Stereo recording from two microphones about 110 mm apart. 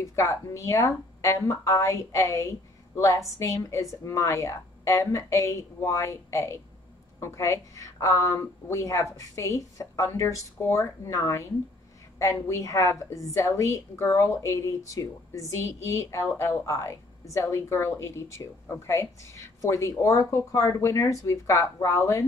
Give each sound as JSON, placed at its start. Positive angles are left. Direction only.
{"t": 0.0, "sound": "a woman's voice", "side_deg": 30}